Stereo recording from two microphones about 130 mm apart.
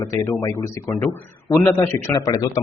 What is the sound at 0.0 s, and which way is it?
Speech, 20° left (ahead or behind).